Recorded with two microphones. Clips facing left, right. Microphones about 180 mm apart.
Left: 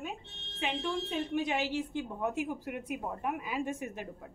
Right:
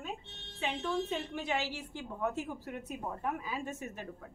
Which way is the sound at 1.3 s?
15° left (ahead or behind).